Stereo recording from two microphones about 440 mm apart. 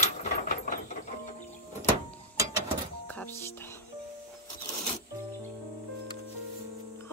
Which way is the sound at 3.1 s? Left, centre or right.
Centre.